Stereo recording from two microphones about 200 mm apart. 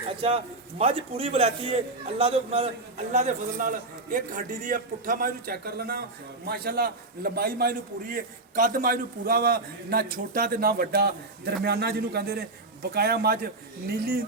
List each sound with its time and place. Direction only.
0.2 s a man's voice: 30° right (ahead or behind); by 13.5 s 50° right (ahead or behind)